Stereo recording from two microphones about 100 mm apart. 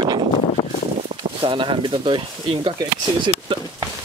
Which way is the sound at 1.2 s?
55° right (ahead or behind).